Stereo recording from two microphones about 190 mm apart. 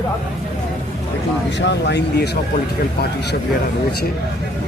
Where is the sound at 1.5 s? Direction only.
65° left (ahead or behind).